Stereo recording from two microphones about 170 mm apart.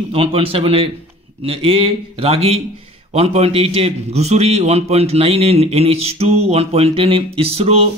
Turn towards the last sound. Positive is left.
turn(degrees=-35)  # may be behind; listen again after turning